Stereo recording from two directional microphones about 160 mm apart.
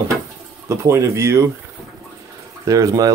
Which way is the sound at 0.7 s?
20° right (ahead or behind).